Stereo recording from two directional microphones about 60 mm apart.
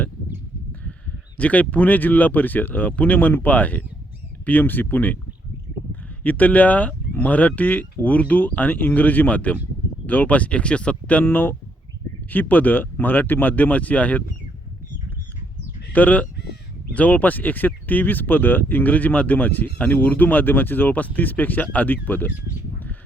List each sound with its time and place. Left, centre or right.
1.4 s speech: left
6.2 s speech: left
11.2 s speech: left
15.9 s speech: left